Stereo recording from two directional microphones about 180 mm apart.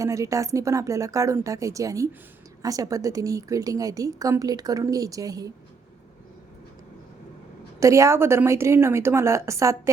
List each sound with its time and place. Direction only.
0.0 s a woman's voice: 20° right (ahead or behind)
7.8 s a woman's voice: 15° right (ahead or behind)